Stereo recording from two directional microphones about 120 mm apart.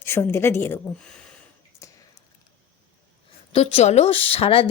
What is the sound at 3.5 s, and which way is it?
A woman's voice, 60° left (ahead or behind).